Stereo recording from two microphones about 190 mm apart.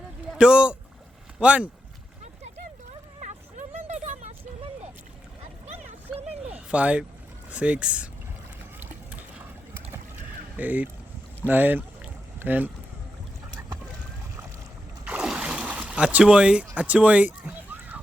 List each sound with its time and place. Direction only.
0.3 s speech: 5° right (ahead or behind)
3.2 s vehicle: 40° right (ahead or behind)
6.4 s a sound: 5° right (ahead or behind)
7.5 s speech: 5° right (ahead or behind)
10.6 s speech: 10° right (ahead or behind)
15.0 s a sound: 5° right (ahead or behind)